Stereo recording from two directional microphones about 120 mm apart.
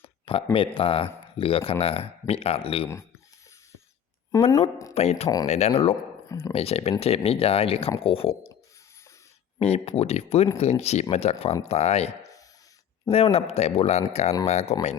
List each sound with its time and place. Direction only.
0.5 s speech: 45° left (ahead or behind)
4.3 s speech: 25° left (ahead or behind)
4.9 s speech: 60° left (ahead or behind)
6.2 s speech: 25° left (ahead or behind)
6.5 s speech: 55° left (ahead or behind)
9.6 s speech: 60° left (ahead or behind)